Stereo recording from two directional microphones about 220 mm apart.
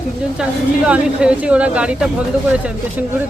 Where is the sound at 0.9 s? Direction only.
5° right (ahead or behind).